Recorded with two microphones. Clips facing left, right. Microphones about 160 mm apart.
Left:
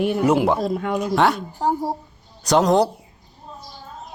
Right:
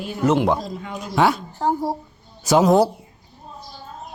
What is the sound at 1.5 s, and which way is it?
Speech, 10° left (ahead or behind).